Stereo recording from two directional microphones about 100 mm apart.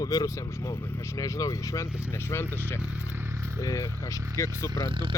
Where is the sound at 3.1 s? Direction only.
25° right (ahead or behind).